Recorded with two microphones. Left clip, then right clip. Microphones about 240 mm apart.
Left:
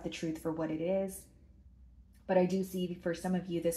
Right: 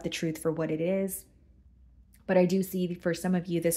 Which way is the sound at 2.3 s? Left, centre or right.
Right.